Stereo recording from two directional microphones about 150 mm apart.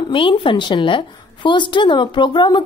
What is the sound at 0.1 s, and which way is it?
A woman's voice, 35° left (ahead or behind).